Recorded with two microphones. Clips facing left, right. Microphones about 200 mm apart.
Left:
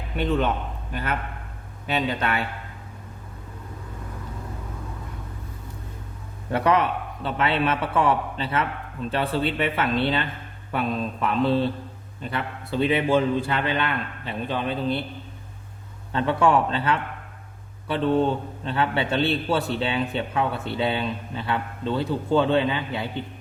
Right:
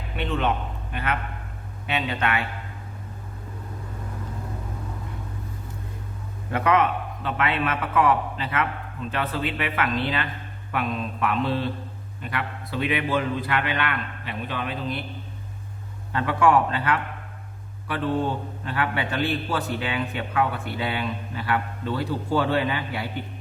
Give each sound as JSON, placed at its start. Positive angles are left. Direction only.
{"t": 0.2, "sound": "a man's voice", "side_deg": 40}
{"t": 6.5, "sound": "a man's voice", "side_deg": 35}
{"t": 16.1, "sound": "a man's voice", "side_deg": 25}
{"t": 18.6, "sound": "a man's voice", "side_deg": 25}